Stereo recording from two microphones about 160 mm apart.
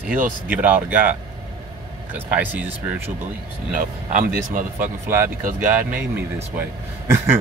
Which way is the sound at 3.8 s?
55° right (ahead or behind).